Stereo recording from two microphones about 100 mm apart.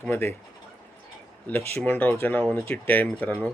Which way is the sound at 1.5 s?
15° left (ahead or behind).